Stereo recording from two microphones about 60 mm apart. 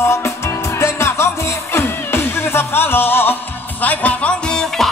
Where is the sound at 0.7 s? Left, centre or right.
Left.